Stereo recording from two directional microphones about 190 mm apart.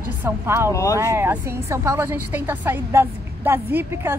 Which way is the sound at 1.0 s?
15° right (ahead or behind).